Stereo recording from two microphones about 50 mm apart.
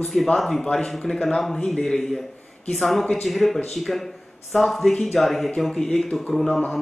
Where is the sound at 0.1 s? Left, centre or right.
Centre.